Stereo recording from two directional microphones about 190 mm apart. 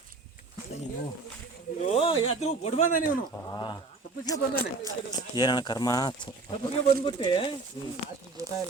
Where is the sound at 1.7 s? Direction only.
35° left (ahead or behind).